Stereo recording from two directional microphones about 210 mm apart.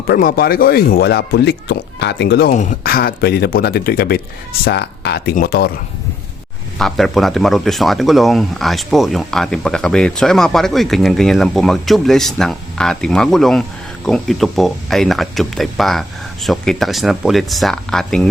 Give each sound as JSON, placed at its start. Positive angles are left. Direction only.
{"t": 0.1, "sound": "speech", "side_deg": 45}
{"t": 6.7, "sound": "speech", "side_deg": 0}